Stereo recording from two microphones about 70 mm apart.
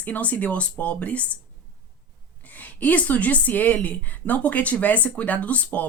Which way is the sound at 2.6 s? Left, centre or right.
Left.